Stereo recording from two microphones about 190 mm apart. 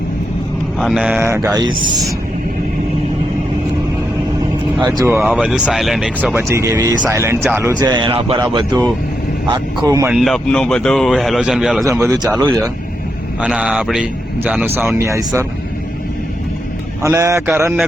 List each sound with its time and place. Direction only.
0.8 s speech: 5° right (ahead or behind); by 1.7 s 20° right (ahead or behind)
4.8 s a man's voice: 15° right (ahead or behind)
10.1 s speech: centre (ahead or behind)
11.9 s speech: 15° right (ahead or behind)
17.0 s speech: 15° right (ahead or behind)